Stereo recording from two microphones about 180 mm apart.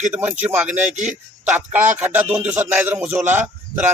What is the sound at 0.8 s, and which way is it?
Music, 40° right (ahead or behind).